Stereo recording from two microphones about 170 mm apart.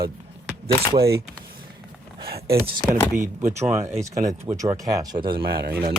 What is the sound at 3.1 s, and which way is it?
Speech, 50° right (ahead or behind).